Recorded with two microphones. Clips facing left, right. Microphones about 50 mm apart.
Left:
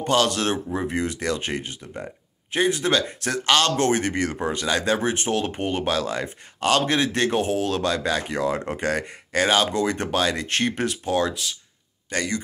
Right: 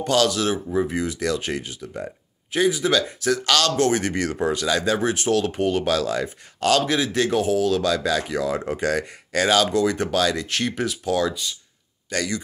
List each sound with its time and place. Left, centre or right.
0.0 s speech: left